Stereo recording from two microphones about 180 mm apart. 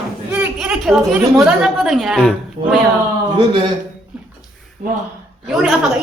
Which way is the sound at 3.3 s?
25° right (ahead or behind).